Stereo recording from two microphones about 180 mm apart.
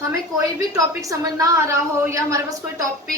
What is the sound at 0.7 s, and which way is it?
A woman's voice, 20° right (ahead or behind).